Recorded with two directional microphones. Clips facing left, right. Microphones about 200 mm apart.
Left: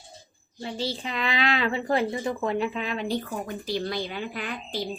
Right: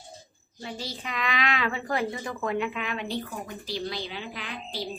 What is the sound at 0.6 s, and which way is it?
Speech, 30° left (ahead or behind).